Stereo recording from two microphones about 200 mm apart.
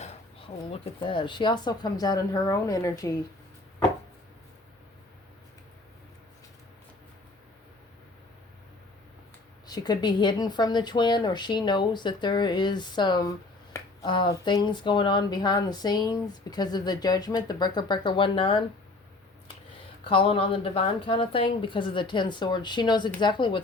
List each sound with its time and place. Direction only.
1.0 s speech: 25° left (ahead or behind)
9.6 s speech: 20° left (ahead or behind)
20.1 s speech: 25° left (ahead or behind)